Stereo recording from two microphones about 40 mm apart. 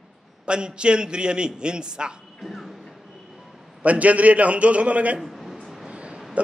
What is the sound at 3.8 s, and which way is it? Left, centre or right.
Speech, right.